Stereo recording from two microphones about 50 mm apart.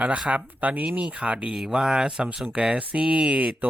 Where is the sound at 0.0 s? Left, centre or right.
Right.